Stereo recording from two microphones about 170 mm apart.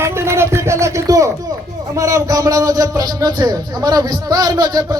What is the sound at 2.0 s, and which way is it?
A man's voice, 20° right (ahead or behind).